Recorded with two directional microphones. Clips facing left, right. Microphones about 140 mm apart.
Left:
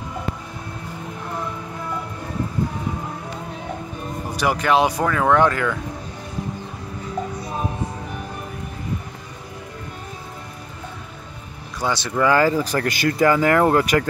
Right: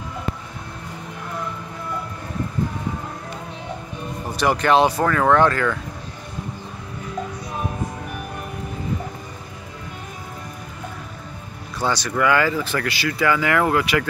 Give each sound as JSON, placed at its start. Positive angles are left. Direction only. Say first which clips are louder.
{"t": 4.4, "sound": "speech", "louder": "right 2 dB", "side_deg": 5}
{"t": 11.9, "sound": "speech", "louder": "left 1 dB", "side_deg": 25}